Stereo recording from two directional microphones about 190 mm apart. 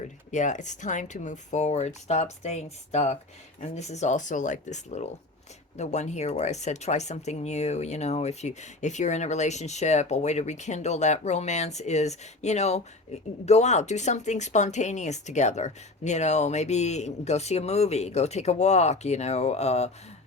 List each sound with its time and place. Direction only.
0.3 s speech: 40° left (ahead or behind)